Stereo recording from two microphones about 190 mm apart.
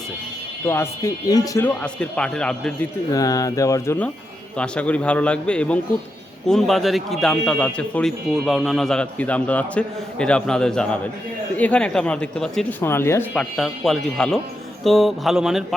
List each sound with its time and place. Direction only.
0.6 s speech: 15° left (ahead or behind)
3.1 s a man's voice: 20° left (ahead or behind); by 15.6 s centre (ahead or behind)